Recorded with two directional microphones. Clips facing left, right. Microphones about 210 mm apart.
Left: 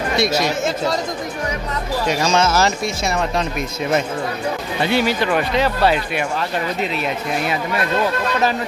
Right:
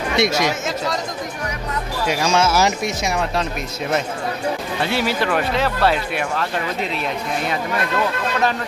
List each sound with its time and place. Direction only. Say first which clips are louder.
0.2 s speech: right 1 dB; 20° right (ahead or behind)
2.0 s speech: even; 10° right (ahead or behind)
4.8 s speech: left 4 dB; centre (ahead or behind)